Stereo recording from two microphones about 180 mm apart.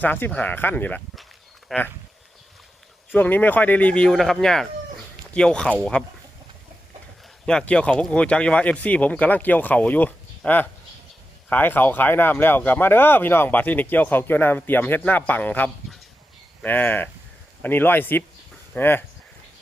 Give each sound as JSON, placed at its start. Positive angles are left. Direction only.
{"t": 0.0, "sound": "speech", "side_deg": 10}
{"t": 3.2, "sound": "speech", "side_deg": 10}
{"t": 7.4, "sound": "speech", "side_deg": 5}